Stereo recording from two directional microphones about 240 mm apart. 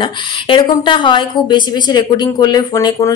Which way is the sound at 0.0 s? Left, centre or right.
Left.